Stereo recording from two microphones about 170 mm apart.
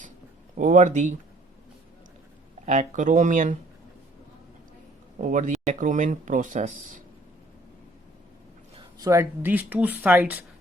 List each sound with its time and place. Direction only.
0.5 s speech: 50° right (ahead or behind)
2.6 s speech: 45° right (ahead or behind)
5.2 s speech: 45° right (ahead or behind)
8.7 s speech: 25° right (ahead or behind)